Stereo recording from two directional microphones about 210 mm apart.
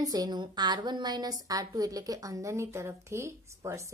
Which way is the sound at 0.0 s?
20° right (ahead or behind).